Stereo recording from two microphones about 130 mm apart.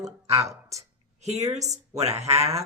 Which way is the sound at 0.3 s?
25° right (ahead or behind).